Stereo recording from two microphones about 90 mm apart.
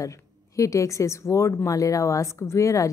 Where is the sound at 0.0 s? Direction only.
35° left (ahead or behind).